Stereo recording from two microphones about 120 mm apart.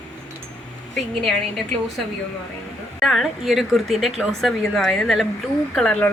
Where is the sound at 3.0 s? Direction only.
Centre (ahead or behind).